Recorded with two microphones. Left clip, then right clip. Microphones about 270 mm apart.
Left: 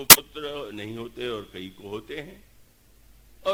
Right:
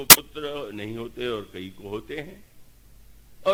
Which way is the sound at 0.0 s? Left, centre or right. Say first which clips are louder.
Even; left.